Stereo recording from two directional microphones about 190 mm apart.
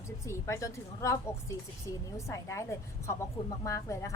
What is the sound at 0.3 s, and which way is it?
A woman's voice, 15° left (ahead or behind).